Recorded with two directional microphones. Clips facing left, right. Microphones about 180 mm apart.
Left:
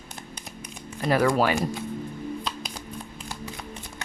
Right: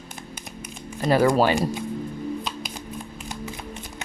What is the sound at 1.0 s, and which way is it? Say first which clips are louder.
Speech: right 3 dB; 25° right (ahead or behind).